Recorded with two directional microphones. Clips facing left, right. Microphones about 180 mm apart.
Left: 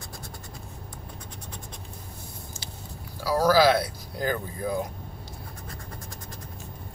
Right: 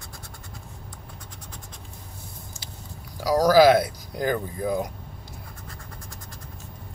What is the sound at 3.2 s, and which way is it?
Speech, 15° right (ahead or behind).